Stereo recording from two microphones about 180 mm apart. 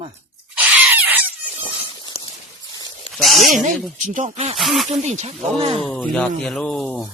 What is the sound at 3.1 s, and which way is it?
Speech, centre (ahead or behind).